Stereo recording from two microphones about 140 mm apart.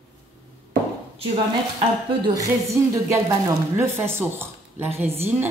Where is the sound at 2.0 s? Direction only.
35° right (ahead or behind).